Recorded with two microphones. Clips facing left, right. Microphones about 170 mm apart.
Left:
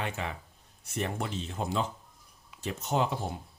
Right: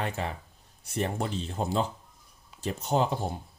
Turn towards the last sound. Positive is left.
turn(degrees=-35)  # may be behind; listen again after turning